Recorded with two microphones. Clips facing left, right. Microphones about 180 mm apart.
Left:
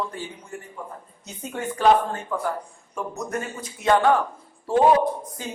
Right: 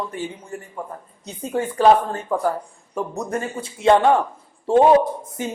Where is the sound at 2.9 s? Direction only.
30° right (ahead or behind).